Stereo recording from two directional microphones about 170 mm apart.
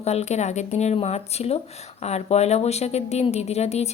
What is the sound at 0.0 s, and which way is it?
Speech, 40° left (ahead or behind).